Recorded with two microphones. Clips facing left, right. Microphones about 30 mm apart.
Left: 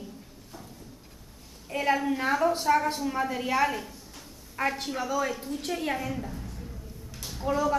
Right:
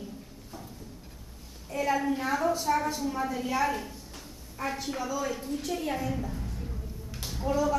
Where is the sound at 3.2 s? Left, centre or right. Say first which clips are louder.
Left 2 dB; left.